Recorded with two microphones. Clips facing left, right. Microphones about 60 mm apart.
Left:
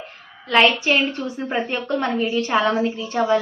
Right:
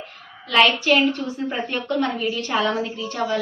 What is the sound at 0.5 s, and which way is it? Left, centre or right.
A woman's voice, left.